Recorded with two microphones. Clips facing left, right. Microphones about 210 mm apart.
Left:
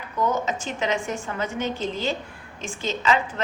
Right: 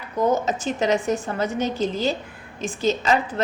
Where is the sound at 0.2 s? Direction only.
35° right (ahead or behind).